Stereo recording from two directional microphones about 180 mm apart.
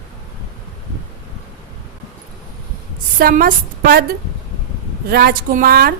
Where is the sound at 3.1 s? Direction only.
55° right (ahead or behind).